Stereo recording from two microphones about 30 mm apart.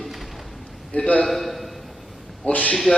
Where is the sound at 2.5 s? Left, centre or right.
Left.